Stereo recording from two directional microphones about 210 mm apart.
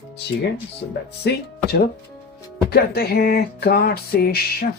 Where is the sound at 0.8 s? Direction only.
50° left (ahead or behind).